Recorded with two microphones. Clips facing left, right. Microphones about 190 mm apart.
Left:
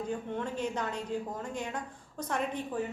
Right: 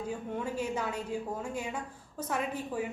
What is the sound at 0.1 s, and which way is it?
A woman's voice, 10° right (ahead or behind).